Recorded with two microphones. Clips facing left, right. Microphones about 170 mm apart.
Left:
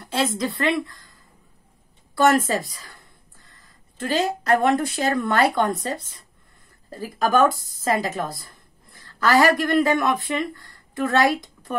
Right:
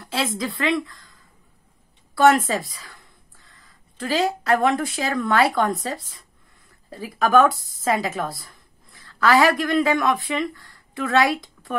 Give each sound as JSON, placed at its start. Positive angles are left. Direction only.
{"t": 0.0, "sound": "a woman's voice", "side_deg": 0}
{"t": 2.4, "sound": "a sound", "side_deg": 0}
{"t": 4.0, "sound": "a woman's voice", "side_deg": 0}